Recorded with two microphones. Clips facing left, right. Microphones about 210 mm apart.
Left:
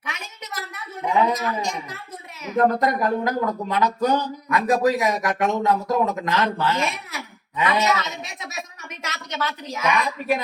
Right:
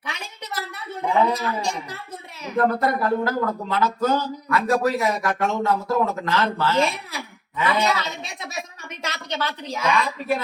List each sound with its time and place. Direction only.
0.0 s a sound: 30° right (ahead or behind)
1.3 s a man's voice: 30° right (ahead or behind)
2.6 s speech: 15° left (ahead or behind)
6.7 s a man's voice: 30° right (ahead or behind)